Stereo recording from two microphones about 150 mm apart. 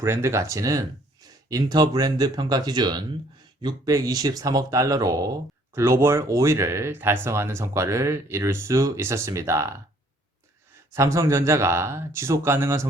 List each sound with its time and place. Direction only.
0.0 s speech: 20° right (ahead or behind)
10.9 s speech: 20° right (ahead or behind)